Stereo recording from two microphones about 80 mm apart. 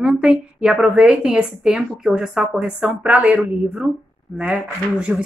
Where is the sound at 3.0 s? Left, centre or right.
Centre.